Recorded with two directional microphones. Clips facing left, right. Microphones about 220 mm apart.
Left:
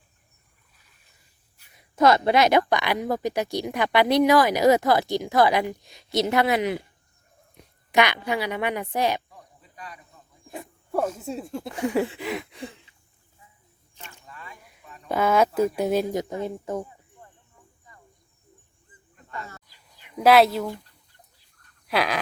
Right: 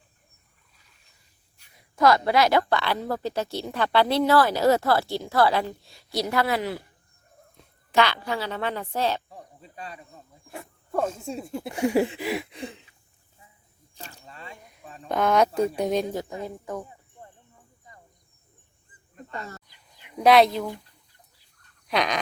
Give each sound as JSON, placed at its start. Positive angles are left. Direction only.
{"t": 2.0, "sound": "a woman's voice", "side_deg": 20}
{"t": 9.3, "sound": "cricket", "side_deg": -30}
{"t": 10.5, "sound": "wild animals", "side_deg": 15}
{"t": 11.2, "sound": "speech", "side_deg": 0}
{"t": 12.5, "sound": "a sound", "side_deg": -20}
{"t": 13.9, "sound": "single-lens reflex camera", "side_deg": -35}
{"t": 15.1, "sound": "speech", "side_deg": 5}
{"t": 16.1, "sound": "a woman's voice", "side_deg": 25}
{"t": 20.1, "sound": "speech", "side_deg": 5}
{"t": 21.8, "sound": "a sound", "side_deg": 5}